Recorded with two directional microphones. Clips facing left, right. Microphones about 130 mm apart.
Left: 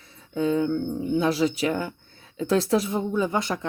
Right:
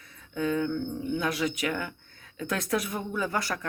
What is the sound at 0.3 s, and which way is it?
Speech, 25° left (ahead or behind).